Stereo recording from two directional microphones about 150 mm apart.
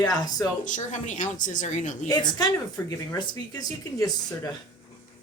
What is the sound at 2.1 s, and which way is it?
Speech, 30° left (ahead or behind).